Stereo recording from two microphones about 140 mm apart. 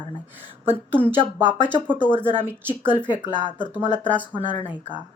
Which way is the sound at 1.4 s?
35° left (ahead or behind).